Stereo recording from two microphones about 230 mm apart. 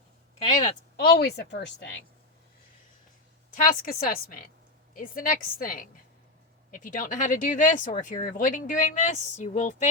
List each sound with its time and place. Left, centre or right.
0.9 s a woman's voice: left
3.6 s speech: left